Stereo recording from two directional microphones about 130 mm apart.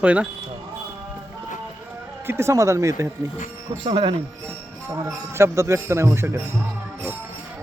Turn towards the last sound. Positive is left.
turn(degrees=-20)  # may be behind; listen again after turning